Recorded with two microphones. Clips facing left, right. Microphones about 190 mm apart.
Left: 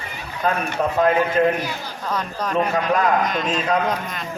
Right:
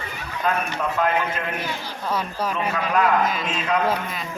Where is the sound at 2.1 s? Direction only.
5° right (ahead or behind).